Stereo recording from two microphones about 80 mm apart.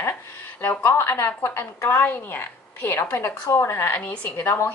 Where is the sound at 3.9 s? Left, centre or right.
Centre.